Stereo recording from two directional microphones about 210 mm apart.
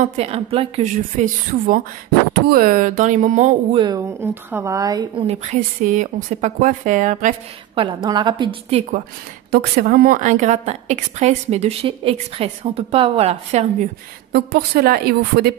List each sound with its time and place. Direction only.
0.0 s a woman's voice: 30° right (ahead or behind)
3.8 s a woman's voice: 15° right (ahead or behind); by 7.3 s 35° right (ahead or behind)
7.7 s a woman's voice: 25° right (ahead or behind)
9.5 s a woman's voice: 45° right (ahead or behind)
14.3 s a woman's voice: 50° right (ahead or behind)